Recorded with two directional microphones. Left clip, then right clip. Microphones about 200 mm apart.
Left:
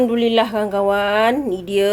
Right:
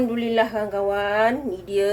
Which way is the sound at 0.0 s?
50° left (ahead or behind).